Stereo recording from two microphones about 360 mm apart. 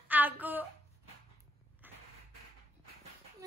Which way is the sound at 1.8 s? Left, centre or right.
Centre.